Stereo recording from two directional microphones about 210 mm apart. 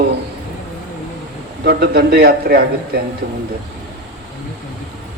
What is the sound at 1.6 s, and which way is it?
A man's voice, 50° right (ahead or behind).